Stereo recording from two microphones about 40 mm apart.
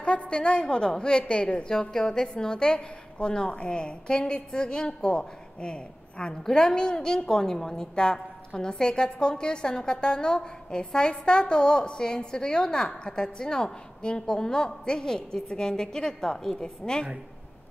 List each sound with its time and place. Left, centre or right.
0.0 s a woman's voice: left